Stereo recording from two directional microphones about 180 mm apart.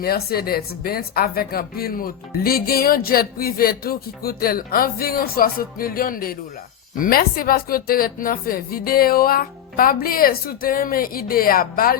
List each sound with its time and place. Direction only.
0.0 s speech: 60° left (ahead or behind)